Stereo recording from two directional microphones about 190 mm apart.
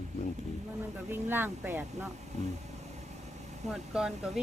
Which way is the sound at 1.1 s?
10° right (ahead or behind).